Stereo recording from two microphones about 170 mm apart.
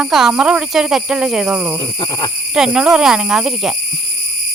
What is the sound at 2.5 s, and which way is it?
Speech, 5° right (ahead or behind).